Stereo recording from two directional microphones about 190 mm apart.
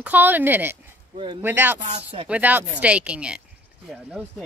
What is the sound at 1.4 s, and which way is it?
Speech, 10° right (ahead or behind).